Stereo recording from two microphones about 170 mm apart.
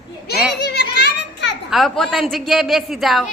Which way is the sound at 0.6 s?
70° left (ahead or behind).